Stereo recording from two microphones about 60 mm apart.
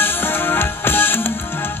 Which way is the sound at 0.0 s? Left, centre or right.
Left.